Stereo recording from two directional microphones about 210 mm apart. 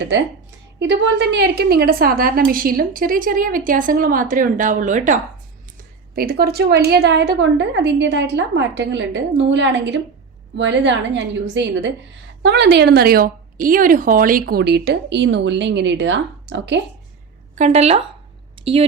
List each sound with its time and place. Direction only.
0.8 s a woman's voice: 55° right (ahead or behind)
17.5 s a woman's voice: 30° right (ahead or behind)
18.5 s a sound: 25° right (ahead or behind)